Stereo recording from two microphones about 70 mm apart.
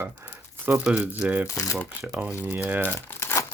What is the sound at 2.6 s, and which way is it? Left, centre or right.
Speech, right.